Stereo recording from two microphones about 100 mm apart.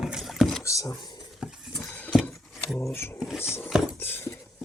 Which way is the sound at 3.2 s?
5° right (ahead or behind).